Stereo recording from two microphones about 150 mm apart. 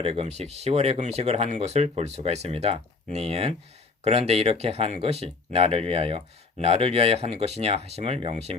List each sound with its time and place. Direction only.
0.0 s speech: 45° right (ahead or behind)